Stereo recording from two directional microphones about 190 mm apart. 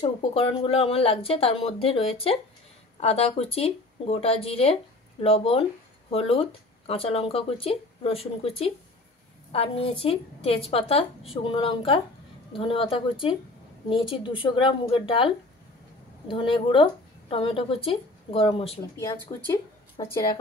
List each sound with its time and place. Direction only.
0.0 s a woman's voice: 30° left (ahead or behind)
18.9 s speech: 20° left (ahead or behind)